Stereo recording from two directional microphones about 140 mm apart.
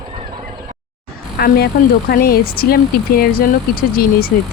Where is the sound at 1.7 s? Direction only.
90° left.